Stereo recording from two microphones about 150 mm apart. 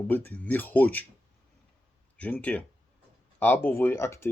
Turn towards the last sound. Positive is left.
turn(degrees=20)  # may be behind; listen again after turning